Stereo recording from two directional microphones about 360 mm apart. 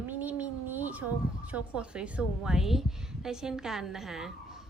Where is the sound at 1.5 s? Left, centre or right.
Centre.